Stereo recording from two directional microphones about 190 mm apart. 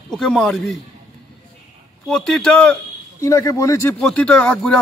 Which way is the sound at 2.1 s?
5° left (ahead or behind).